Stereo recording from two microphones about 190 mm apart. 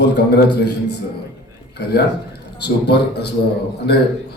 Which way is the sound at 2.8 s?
60° left (ahead or behind).